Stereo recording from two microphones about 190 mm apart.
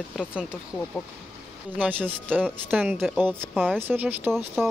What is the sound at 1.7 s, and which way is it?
Speech, 10° right (ahead or behind).